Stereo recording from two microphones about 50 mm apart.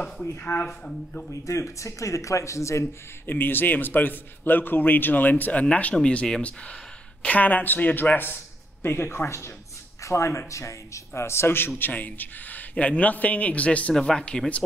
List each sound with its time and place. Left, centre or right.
0.4 s a man's voice: left
1.3 s speech: left
3.3 s a man's voice: left
7.2 s a man's voice: left
8.8 s speech: left
10.0 s a man's voice: left
13.9 s speech: centre